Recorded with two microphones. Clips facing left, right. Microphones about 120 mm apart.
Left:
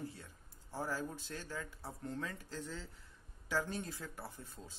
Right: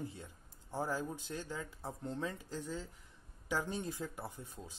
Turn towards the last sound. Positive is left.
turn(degrees=-15)  # may be behind; listen again after turning